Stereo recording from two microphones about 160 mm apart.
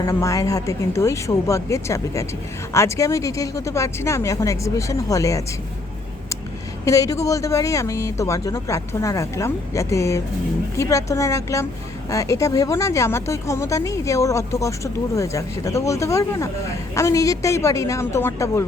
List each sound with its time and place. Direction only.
0.0 s speech: 20° left (ahead or behind)
6.8 s speech: 20° left (ahead or behind)